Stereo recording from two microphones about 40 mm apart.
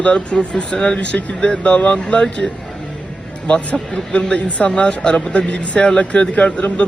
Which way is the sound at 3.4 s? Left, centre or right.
Left.